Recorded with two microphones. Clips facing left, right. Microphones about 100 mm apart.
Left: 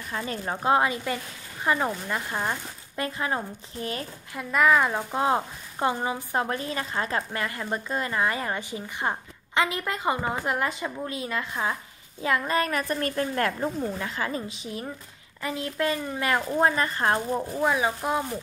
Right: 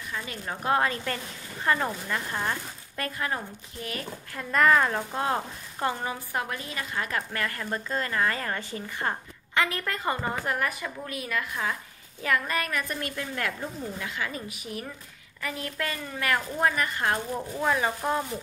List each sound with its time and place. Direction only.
0.1 s speech: 35° left (ahead or behind)
4.3 s speech: 10° left (ahead or behind); by 17.2 s 30° left (ahead or behind)
17.3 s speech: 15° left (ahead or behind)